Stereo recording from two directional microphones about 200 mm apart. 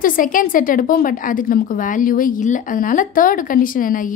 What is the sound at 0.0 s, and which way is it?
A woman's voice, 45° left (ahead or behind).